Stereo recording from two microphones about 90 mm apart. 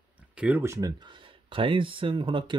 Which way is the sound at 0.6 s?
35° right (ahead or behind).